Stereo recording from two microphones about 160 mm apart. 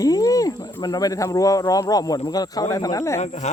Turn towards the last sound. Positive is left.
turn(degrees=45)  # may be behind; listen again after turning